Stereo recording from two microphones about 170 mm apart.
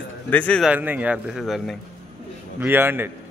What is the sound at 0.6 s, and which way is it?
Speech, 10° right (ahead or behind).